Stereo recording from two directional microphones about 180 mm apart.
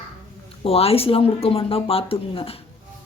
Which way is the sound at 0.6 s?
35° left (ahead or behind).